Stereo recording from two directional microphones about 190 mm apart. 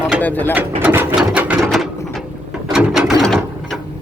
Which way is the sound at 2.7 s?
5° right (ahead or behind).